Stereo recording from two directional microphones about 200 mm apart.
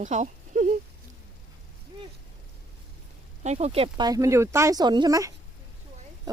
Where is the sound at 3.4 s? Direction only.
35° right (ahead or behind).